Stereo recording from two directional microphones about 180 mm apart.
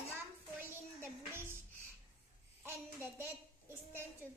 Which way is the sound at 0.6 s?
15° right (ahead or behind).